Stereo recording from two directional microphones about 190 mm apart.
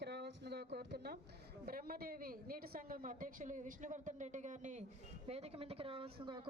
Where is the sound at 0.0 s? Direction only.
60° right (ahead or behind).